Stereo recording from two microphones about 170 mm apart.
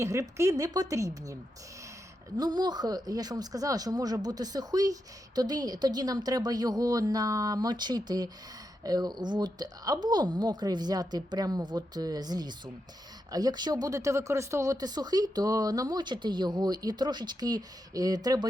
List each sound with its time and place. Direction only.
0.0 s speech: 20° right (ahead or behind)
2.4 s speech: 25° right (ahead or behind)